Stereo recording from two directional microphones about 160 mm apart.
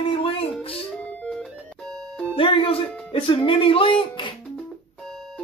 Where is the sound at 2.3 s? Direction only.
35° left (ahead or behind).